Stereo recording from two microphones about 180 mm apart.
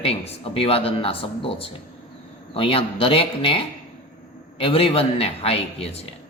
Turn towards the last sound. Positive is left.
turn(degrees=35)  # may be behind; listen again after turning